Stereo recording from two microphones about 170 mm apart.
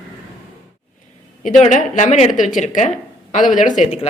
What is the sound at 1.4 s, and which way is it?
A woman's voice, 45° left (ahead or behind).